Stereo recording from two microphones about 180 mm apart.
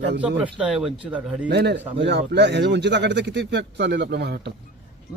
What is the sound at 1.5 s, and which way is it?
A man's voice, 65° right (ahead or behind).